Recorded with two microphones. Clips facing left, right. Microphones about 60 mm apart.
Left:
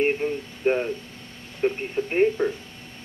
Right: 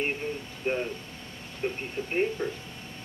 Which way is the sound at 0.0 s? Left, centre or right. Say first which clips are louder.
Left 8 dB; left.